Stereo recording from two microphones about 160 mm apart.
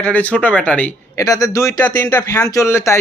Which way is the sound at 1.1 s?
20° left (ahead or behind).